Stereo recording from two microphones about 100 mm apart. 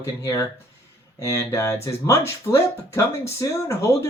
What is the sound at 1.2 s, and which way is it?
Speech, 35° left (ahead or behind).